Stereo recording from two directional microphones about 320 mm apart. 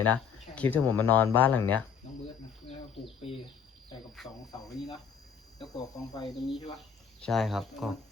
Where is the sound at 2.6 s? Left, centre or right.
Centre.